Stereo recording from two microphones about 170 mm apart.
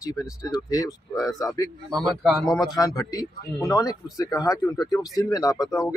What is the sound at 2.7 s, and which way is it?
Speech, 20° left (ahead or behind).